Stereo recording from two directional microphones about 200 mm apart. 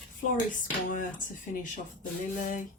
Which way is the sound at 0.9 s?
40° left (ahead or behind).